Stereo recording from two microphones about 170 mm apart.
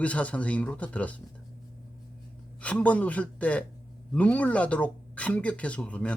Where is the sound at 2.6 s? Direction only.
10° left (ahead or behind).